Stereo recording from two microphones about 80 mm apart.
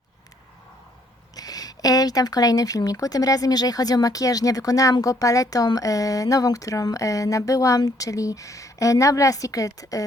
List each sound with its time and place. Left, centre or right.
1.4 s speech: left